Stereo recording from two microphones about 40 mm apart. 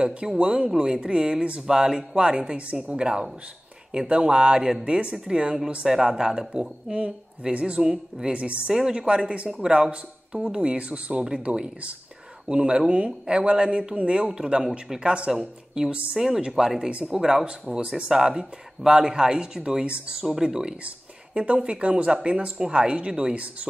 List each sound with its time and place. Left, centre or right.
0.4 s speech: right
5.9 s speech: centre
8.3 s speech: right; by 15.9 s centre
15.9 s speech: right
16.2 s speech: centre
17.7 s speech: right
18.1 s speech: centre; by 23.7 s right